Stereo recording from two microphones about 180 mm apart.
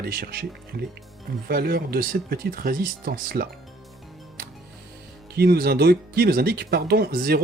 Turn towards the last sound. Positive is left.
turn(degrees=-55)  # may be behind; listen again after turning